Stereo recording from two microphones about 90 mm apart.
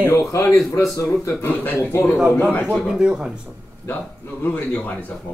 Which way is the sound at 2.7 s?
5° right (ahead or behind).